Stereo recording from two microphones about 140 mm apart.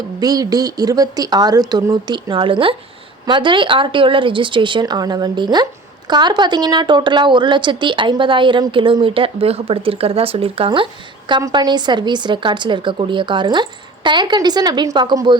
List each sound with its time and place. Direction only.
0.2 s a woman's voice: 25° right (ahead or behind)